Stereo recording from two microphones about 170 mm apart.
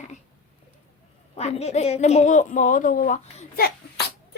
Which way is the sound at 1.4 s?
40° left (ahead or behind).